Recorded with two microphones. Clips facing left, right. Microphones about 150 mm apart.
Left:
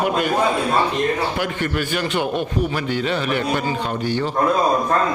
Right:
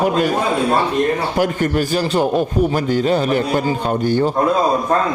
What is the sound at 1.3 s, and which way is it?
A man's voice, 40° right (ahead or behind).